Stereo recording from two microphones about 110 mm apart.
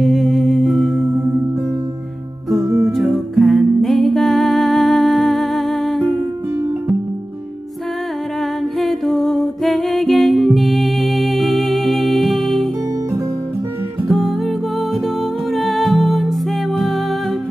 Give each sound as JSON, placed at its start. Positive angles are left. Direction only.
{"t": 0.0, "sound": "music", "side_deg": 0}
{"t": 2.6, "sound": "music", "side_deg": -25}
{"t": 2.9, "sound": "music", "side_deg": 0}
{"t": 8.7, "sound": "music", "side_deg": 0}
{"t": 14.0, "sound": "music", "side_deg": 0}
{"t": 15.5, "sound": "music", "side_deg": 0}